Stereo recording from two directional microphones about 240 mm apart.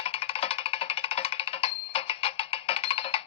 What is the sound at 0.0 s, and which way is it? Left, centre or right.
Music, left.